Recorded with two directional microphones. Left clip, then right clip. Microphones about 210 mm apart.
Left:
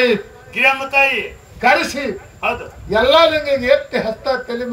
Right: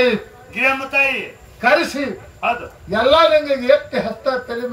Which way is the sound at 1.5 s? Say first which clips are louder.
Left 1 dB; 50° left (ahead or behind).